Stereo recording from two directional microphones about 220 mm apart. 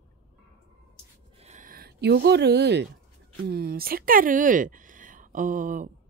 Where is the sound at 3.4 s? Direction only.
45° right (ahead or behind).